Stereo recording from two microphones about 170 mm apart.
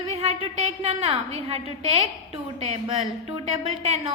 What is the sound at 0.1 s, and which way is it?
A woman's voice, 35° right (ahead or behind).